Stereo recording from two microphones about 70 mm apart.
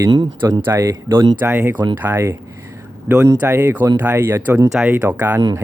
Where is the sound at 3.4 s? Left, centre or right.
Right.